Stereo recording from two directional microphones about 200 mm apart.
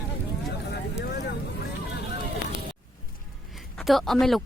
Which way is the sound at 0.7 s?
55° left (ahead or behind).